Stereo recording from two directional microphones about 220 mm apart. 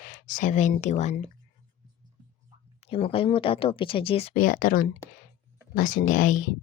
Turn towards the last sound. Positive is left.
turn(degrees=35)  # may be behind; listen again after turning